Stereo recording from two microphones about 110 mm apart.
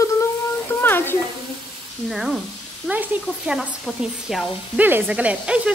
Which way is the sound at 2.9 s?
15° right (ahead or behind).